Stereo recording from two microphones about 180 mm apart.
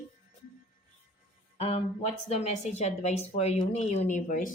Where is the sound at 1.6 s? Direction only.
35° left (ahead or behind).